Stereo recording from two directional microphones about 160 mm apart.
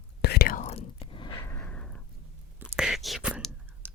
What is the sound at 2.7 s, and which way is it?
Whispering, 5° right (ahead or behind).